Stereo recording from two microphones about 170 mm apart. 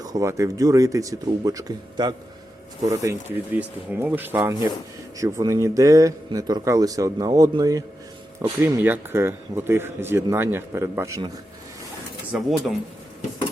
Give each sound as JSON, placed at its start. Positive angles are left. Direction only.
{"t": 0.0, "sound": "speech", "side_deg": -20}
{"t": 12.3, "sound": "speech", "side_deg": 0}